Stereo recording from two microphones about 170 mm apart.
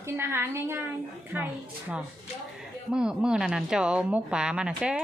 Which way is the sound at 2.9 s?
5° right (ahead or behind).